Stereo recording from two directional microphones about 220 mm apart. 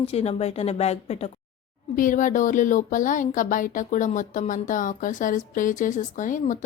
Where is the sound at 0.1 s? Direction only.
30° left (ahead or behind).